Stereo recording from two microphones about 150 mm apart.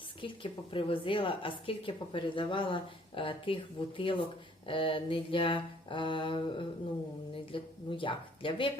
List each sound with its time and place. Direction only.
0.2 s a woman's voice: 35° left (ahead or behind)